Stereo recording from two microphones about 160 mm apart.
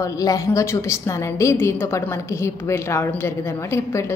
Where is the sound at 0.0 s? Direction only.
20° left (ahead or behind).